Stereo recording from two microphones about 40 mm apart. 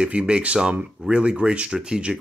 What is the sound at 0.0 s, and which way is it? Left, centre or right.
Speech, right.